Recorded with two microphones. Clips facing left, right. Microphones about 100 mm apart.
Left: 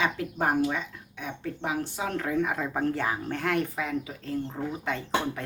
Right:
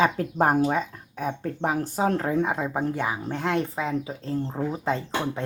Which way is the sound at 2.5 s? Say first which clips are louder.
Right 2 dB; 20° right (ahead or behind).